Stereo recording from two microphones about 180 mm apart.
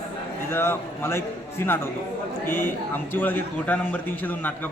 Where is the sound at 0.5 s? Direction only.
10° left (ahead or behind).